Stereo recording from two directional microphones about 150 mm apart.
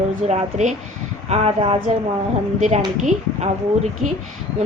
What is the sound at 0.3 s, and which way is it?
Speech, 50° right (ahead or behind).